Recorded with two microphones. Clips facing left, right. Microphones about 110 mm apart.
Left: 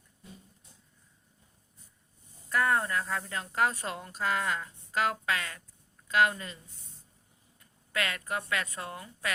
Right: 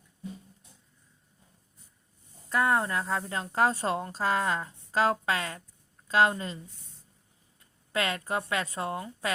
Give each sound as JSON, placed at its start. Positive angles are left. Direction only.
{"t": 2.5, "sound": "a woman's voice", "side_deg": -20}
{"t": 7.6, "sound": "speech", "side_deg": -30}